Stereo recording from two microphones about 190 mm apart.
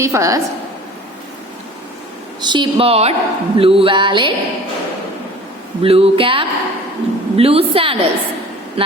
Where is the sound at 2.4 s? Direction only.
25° right (ahead or behind).